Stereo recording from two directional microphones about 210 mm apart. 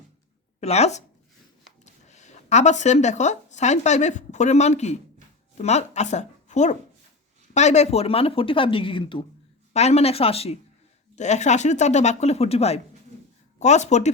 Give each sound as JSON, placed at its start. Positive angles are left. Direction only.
{"t": 0.6, "sound": "speech", "side_deg": 30}